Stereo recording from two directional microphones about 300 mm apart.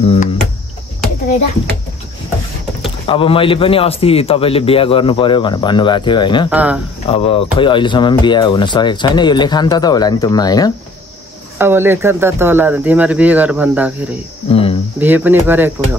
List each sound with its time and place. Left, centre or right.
0.0 s cricket: centre
3.1 s speech: centre
6.5 s speech: centre
7.1 s speech: centre
11.5 s speech: centre
14.5 s speech: centre
15.0 s speech: centre